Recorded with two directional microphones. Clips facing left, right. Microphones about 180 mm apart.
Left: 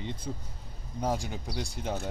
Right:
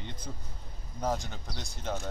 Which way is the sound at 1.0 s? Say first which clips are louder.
Left 1 dB; 10° left (ahead or behind).